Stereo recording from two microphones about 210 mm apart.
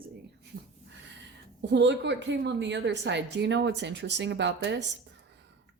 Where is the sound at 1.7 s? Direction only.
55° right (ahead or behind).